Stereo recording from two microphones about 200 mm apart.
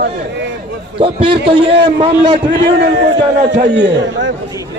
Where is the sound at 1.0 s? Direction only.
25° right (ahead or behind).